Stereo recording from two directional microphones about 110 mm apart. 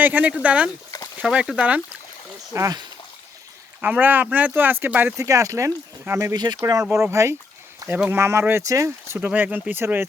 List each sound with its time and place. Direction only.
0.0 s speech: 15° right (ahead or behind)
2.5 s speech: 30° right (ahead or behind)
3.8 s speech: 15° right (ahead or behind)
6.3 s speech: 40° right (ahead or behind)
6.6 s speech: 30° right (ahead or behind)
9.1 s speech: 15° right (ahead or behind)